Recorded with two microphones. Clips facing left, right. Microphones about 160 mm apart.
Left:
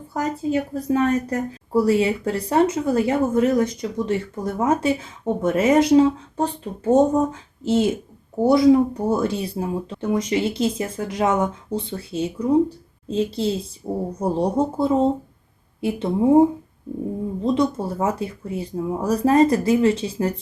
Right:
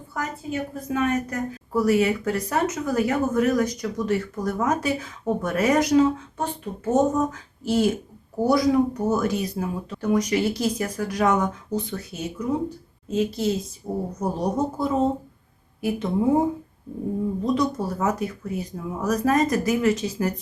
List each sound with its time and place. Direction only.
0.1 s a woman's voice: 35° left (ahead or behind)
17.4 s a woman's voice: 25° left (ahead or behind)